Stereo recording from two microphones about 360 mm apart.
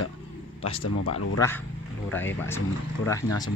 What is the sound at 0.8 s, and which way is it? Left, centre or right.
Speech, left.